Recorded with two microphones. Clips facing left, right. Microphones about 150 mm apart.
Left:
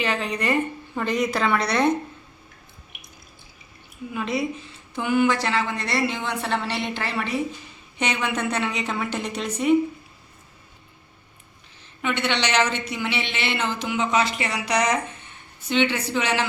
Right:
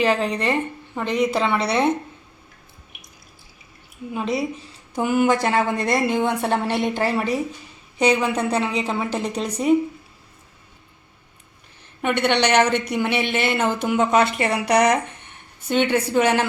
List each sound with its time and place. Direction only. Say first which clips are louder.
0.0 s a woman's voice: right 5 dB; 35° right (ahead or behind)
4.1 s a woman's voice: right 2 dB; 35° right (ahead or behind)
12.0 s a woman's voice: right 5 dB; 55° right (ahead or behind)